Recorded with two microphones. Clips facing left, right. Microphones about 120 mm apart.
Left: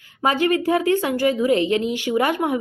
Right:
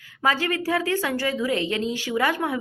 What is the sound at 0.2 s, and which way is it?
A woman's voice, 20° left (ahead or behind).